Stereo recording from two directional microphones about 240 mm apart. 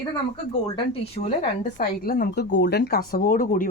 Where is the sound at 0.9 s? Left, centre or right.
Left.